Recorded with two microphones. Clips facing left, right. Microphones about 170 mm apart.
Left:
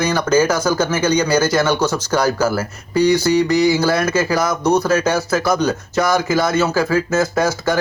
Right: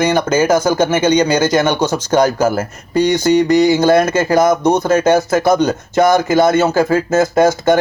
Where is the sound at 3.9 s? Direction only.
50° right (ahead or behind).